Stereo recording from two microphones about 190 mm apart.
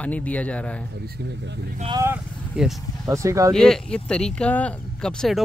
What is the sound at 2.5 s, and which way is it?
Speech, 5° right (ahead or behind).